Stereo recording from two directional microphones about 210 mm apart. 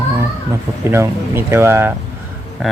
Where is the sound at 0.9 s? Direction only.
10° right (ahead or behind).